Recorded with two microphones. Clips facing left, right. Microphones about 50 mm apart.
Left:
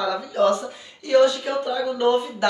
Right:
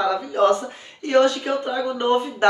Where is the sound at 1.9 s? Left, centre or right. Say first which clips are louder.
Left 1 dB; right.